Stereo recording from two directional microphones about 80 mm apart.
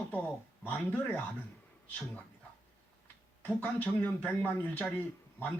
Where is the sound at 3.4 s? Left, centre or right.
Left.